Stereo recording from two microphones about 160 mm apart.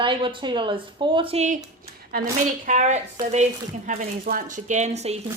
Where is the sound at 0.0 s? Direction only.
30° right (ahead or behind).